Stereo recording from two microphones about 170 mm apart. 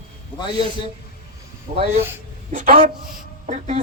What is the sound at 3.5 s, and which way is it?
Speech, 40° right (ahead or behind).